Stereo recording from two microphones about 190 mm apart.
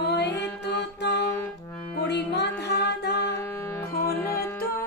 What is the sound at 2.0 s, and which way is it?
Music, 60° left (ahead or behind).